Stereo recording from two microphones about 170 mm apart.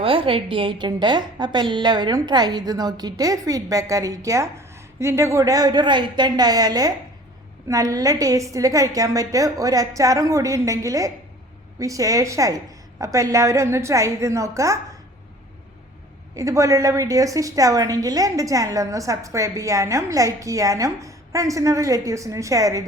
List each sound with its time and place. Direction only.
0.0 s a woman's voice: 30° right (ahead or behind)
16.3 s a woman's voice: 20° right (ahead or behind)